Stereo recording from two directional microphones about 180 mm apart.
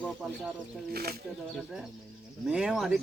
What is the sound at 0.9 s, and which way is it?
Speech, 60° right (ahead or behind).